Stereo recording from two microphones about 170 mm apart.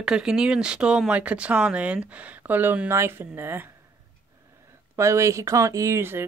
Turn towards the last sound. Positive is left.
turn(degrees=-15)  # may be behind; listen again after turning